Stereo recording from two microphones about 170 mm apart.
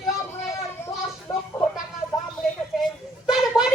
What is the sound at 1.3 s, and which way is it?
Chicken, 25° left (ahead or behind).